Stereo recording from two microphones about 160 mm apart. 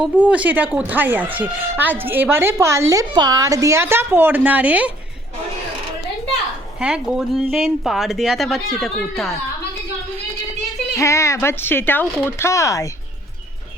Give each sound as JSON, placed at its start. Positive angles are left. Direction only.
{"t": 0.0, "sound": "a woman's voice", "side_deg": -10}
{"t": 6.7, "sound": "a woman's voice", "side_deg": -5}
{"t": 10.9, "sound": "speech", "side_deg": 20}